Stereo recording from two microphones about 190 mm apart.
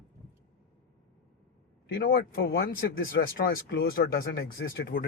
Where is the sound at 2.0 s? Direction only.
55° left (ahead or behind).